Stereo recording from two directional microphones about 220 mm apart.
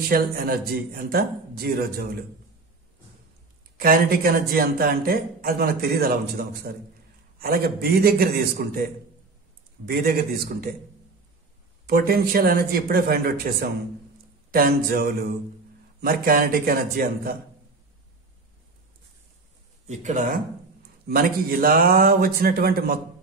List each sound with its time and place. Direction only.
0.1 s speech: 45° right (ahead or behind)
3.7 s speech: 40° right (ahead or behind)
9.8 s speech: 45° right (ahead or behind)
11.9 s a man's voice: 40° right (ahead or behind)
19.9 s a man's voice: 30° right (ahead or behind)